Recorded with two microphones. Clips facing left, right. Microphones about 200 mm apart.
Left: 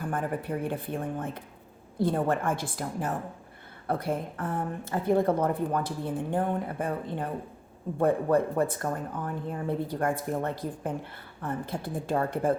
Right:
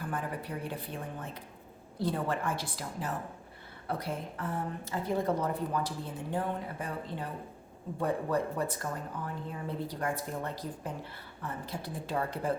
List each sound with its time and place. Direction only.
0.1 s a woman's voice: 50° left (ahead or behind)